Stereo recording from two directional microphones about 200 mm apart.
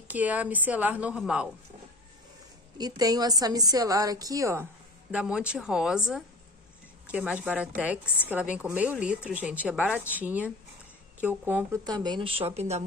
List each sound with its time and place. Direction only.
0.1 s a woman's voice: 10° right (ahead or behind)
2.8 s a woman's voice: 20° right (ahead or behind)
11.8 s speech: 20° right (ahead or behind)